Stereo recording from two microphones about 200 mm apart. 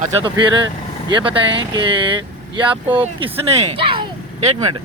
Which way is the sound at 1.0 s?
25° right (ahead or behind).